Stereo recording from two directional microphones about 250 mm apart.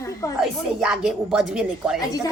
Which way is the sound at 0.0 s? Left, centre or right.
Centre.